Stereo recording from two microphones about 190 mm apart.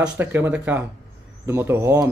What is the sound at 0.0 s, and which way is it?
Speech, 10° right (ahead or behind).